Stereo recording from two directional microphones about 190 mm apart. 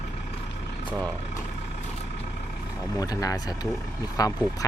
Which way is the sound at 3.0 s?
20° left (ahead or behind).